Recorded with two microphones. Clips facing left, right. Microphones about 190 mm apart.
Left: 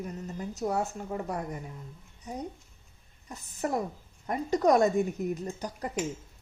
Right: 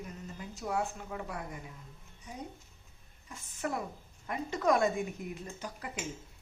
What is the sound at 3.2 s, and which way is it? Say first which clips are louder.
Speech: left 4 dB; 40° left (ahead or behind).